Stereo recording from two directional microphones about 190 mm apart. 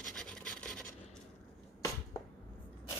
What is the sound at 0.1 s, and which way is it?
Filing, 5° left (ahead or behind).